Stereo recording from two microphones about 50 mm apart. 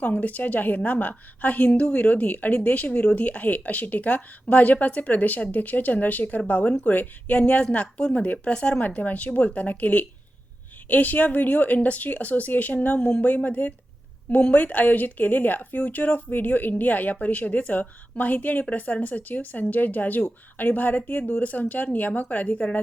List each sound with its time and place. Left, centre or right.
0.0 s a woman's voice: left